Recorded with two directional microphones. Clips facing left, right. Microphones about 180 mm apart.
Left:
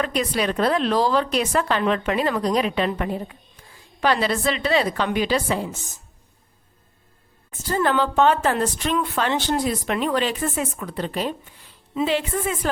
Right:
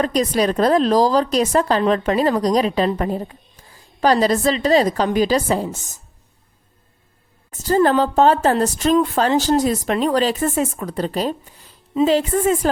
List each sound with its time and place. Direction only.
0.0 s speech: 40° right (ahead or behind)
7.6 s speech: 40° right (ahead or behind)